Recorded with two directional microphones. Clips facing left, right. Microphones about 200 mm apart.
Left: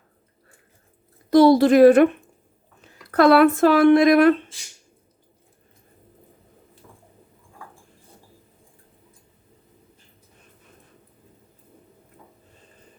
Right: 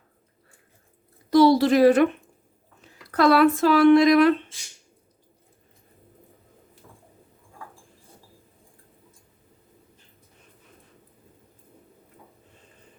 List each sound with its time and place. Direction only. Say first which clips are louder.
1.3 s a woman's voice: left 3 dB; 50° left (ahead or behind)
3.1 s speech: left 3 dB; 55° left (ahead or behind)